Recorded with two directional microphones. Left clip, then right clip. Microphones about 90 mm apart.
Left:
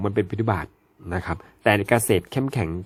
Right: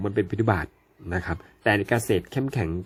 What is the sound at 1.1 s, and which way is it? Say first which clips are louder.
Speech: left 1 dB; 35° left (ahead or behind).